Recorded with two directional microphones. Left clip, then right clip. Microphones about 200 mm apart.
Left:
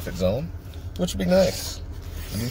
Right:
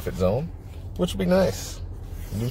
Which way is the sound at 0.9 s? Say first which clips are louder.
Left 1 dB; 10° right (ahead or behind).